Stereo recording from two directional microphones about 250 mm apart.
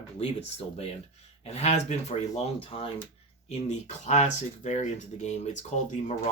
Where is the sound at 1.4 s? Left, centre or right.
Left.